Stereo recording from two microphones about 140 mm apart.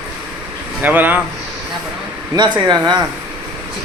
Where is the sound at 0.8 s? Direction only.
10° right (ahead or behind).